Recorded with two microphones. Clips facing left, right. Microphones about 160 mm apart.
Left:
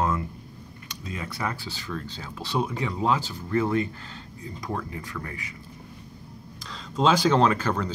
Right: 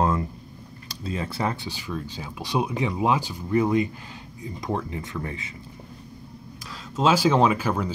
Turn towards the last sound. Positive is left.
turn(degrees=-10)  # may be behind; listen again after turning